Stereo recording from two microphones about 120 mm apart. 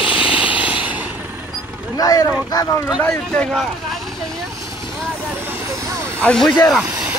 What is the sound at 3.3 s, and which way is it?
Speech, 5° left (ahead or behind).